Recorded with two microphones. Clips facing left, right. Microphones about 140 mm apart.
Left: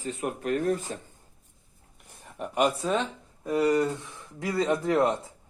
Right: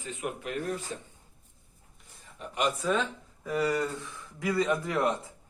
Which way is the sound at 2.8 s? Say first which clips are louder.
Left 1 dB; 25° left (ahead or behind).